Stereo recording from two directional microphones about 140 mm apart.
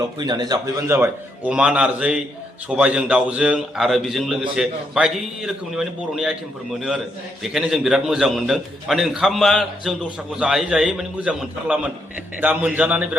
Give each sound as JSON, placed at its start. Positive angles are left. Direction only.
{"t": 0.0, "sound": "a man's voice", "side_deg": -30}
{"t": 1.5, "sound": "a man's voice", "side_deg": -5}